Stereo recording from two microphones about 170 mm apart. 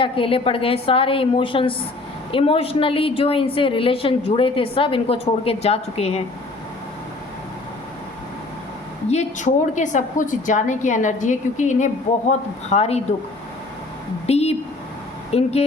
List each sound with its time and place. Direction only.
0.0 s a woman's voice: 30° left (ahead or behind)
9.0 s a woman's voice: 45° left (ahead or behind)
14.3 s a sound: 40° left (ahead or behind)
15.3 s a woman's voice: 35° left (ahead or behind)